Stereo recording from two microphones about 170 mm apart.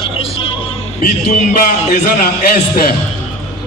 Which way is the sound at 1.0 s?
50° left (ahead or behind).